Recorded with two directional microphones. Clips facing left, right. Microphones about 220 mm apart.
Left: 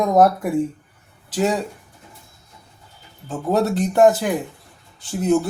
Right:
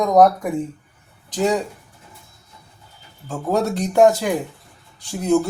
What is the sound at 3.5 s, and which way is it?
Speech, centre (ahead or behind).